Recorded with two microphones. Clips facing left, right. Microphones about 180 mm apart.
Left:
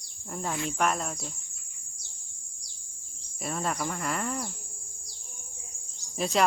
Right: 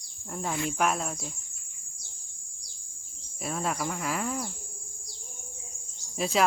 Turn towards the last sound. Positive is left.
turn(degrees=0)  # may be behind; listen again after turning